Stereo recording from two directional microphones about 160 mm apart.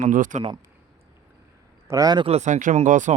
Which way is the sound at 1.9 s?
25° right (ahead or behind).